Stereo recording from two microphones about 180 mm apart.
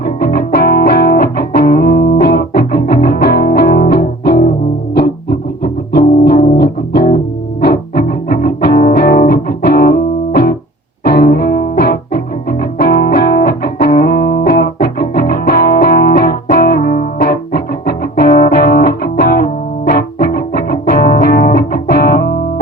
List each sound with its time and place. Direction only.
0.0 s music: 60° left (ahead or behind)
6.2 s music: 60° left (ahead or behind)
11.0 s music: 60° left (ahead or behind)